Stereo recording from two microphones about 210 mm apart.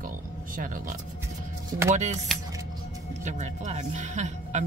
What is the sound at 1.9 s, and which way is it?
Speech, 35° right (ahead or behind).